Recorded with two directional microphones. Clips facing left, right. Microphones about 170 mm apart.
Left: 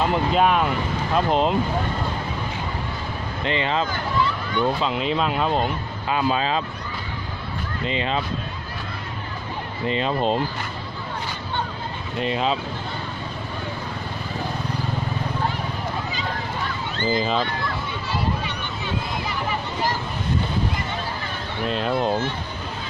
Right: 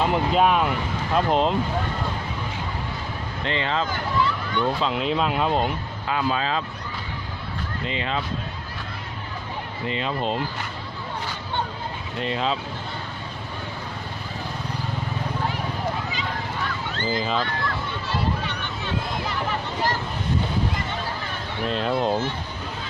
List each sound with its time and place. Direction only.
0.0 s speech: centre (ahead or behind)
3.4 s speech: 15° left (ahead or behind); by 5.7 s centre (ahead or behind)
6.1 s speech: 20° left (ahead or behind)
7.9 s speech: 25° left (ahead or behind)
9.8 s speech: 30° left (ahead or behind)
12.2 s speech: 15° left (ahead or behind)
17.0 s speech: 20° left (ahead or behind)
19.3 s a sound: 5° left (ahead or behind)
21.7 s speech: centre (ahead or behind)